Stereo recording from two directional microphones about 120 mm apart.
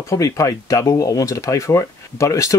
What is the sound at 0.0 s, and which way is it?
Speech, 25° left (ahead or behind).